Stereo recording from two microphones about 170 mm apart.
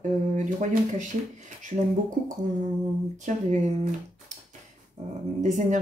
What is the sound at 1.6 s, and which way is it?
Speech, 45° right (ahead or behind).